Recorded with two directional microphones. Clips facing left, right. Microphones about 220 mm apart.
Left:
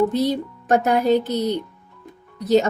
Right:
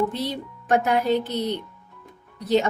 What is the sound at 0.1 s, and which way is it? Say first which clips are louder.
A woman's voice: left 8 dB; 40° left (ahead or behind).